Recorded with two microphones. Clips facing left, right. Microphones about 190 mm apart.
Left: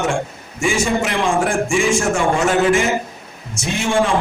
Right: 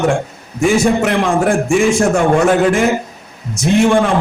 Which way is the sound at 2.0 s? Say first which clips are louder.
Right 5 dB; 60° right (ahead or behind).